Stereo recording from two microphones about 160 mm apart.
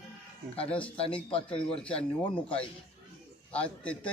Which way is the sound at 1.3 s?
35° left (ahead or behind).